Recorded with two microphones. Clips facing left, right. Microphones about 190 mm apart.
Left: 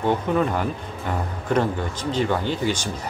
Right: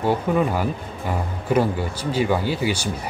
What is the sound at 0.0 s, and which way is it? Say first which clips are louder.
Speech: right 1 dB; 10° right (ahead or behind).